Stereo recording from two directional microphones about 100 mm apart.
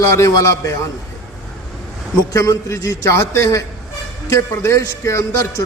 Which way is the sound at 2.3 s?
30° left (ahead or behind).